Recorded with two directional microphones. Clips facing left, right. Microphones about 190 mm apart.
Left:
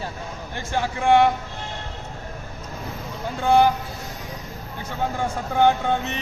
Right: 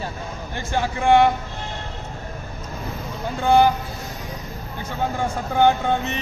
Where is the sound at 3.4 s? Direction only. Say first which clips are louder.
Right 1 dB; 20° right (ahead or behind).